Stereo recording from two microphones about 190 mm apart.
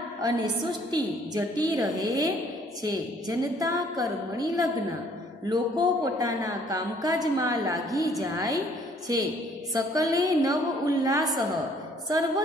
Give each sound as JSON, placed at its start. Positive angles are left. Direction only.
{"t": 0.2, "sound": "a woman's voice", "side_deg": -20}